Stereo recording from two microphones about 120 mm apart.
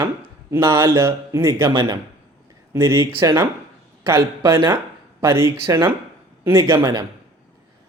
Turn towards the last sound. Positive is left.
turn(degrees=-30)  # may be behind; listen again after turning